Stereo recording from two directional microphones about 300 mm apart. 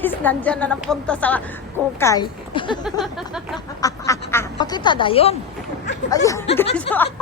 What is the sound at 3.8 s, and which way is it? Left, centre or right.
A woman's voice, centre.